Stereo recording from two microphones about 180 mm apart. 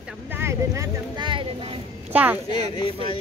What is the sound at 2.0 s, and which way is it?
Speech, 10° right (ahead or behind).